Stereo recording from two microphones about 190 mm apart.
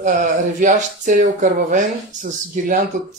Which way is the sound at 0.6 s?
40° right (ahead or behind).